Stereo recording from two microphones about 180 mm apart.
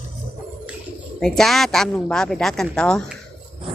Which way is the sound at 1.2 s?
Centre (ahead or behind).